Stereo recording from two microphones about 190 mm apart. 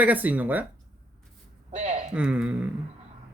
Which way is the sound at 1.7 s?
40° right (ahead or behind).